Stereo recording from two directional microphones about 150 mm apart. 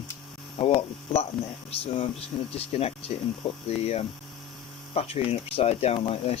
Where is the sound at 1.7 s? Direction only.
40° left (ahead or behind).